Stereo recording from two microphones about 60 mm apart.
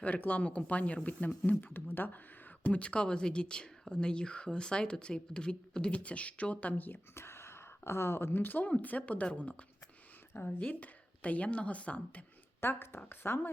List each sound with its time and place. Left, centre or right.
0.0 s speech: left
2.6 s speech: left
7.1 s speech: left
10.6 s speech: left
12.5 s a woman's voice: left